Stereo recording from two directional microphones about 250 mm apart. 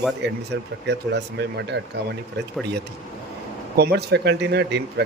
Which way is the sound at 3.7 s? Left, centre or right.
Right.